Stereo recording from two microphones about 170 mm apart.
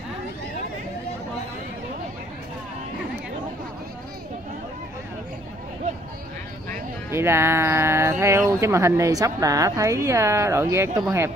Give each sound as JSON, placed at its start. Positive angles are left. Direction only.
{"t": 7.1, "sound": "speech", "side_deg": -15}